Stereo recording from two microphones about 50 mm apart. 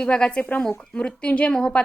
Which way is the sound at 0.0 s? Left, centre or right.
Centre.